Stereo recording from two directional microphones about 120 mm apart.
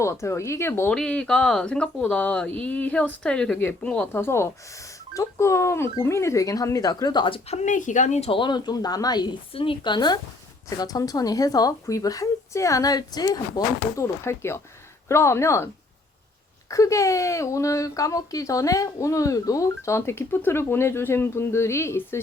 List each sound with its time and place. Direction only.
0.0 s speech: 25° left (ahead or behind)
0.9 s speech: 10° left (ahead or behind)
4.1 s speech: 20° left (ahead or behind); by 8.3 s 80° left
8.3 s speech: 40° left (ahead or behind)
9.5 s speech: 45° left (ahead or behind)
14.0 s speech: 20° left (ahead or behind)